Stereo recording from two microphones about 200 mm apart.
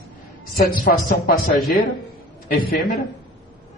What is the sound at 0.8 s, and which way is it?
Speech, 45° left (ahead or behind).